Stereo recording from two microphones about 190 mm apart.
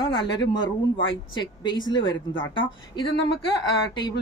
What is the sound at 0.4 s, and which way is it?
Speech, 25° left (ahead or behind).